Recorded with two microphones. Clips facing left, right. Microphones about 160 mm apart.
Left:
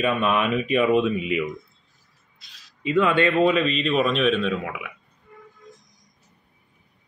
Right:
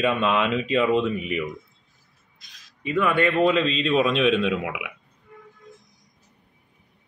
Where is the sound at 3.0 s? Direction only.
20° left (ahead or behind); by 4.1 s 5° left (ahead or behind).